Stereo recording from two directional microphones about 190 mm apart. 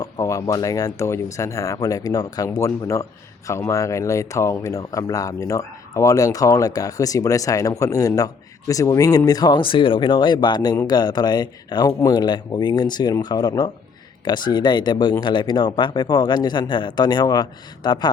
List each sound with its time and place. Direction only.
0.0 s speech: 15° left (ahead or behind)